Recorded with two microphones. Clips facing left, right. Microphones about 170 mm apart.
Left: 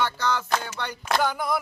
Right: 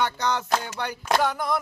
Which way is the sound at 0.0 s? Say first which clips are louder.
Right 1 dB; 20° right (ahead or behind).